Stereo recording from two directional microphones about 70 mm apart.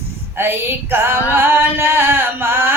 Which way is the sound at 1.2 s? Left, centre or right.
Right.